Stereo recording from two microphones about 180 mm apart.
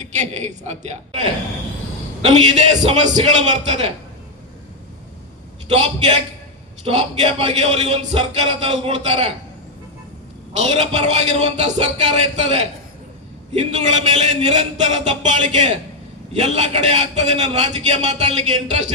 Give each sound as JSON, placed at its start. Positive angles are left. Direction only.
{"t": 0.0, "sound": "a man's voice", "side_deg": -40}
{"t": 5.6, "sound": "a man's voice", "side_deg": -35}
{"t": 10.5, "sound": "a man's voice", "side_deg": -40}